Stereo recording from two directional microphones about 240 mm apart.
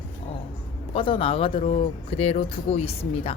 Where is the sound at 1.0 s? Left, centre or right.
Left.